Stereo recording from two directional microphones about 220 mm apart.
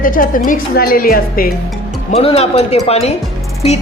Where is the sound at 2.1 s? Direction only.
25° left (ahead or behind).